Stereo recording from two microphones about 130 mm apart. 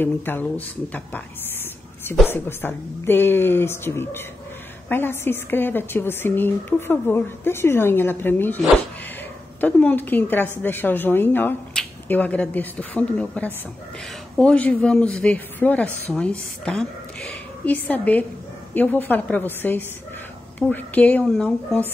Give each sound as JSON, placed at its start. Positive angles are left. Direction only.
{"t": 0.0, "sound": "speech", "side_deg": 15}
{"t": 2.2, "sound": "speech", "side_deg": 15}
{"t": 9.6, "sound": "speech", "side_deg": 10}